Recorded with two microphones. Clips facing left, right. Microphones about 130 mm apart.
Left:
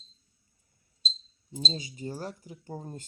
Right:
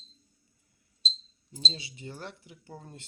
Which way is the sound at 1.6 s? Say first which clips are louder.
Left 5 dB; 45° left (ahead or behind).